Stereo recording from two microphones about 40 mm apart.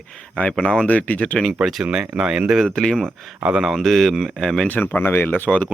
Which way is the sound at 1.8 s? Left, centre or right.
Centre.